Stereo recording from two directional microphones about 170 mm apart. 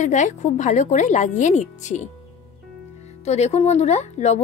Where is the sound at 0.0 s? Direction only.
45° left (ahead or behind).